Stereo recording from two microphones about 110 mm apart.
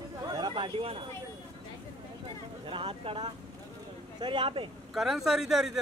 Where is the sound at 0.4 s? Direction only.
45° right (ahead or behind).